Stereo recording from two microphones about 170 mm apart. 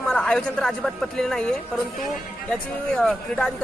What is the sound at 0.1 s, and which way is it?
Speech, 5° left (ahead or behind).